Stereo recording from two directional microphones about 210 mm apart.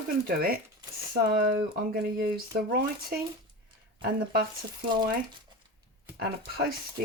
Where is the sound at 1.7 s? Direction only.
45° right (ahead or behind).